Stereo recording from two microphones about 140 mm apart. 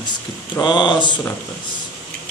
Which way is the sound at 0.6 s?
35° left (ahead or behind).